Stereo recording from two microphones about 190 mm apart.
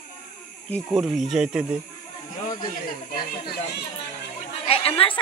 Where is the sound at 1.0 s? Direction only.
Centre (ahead or behind).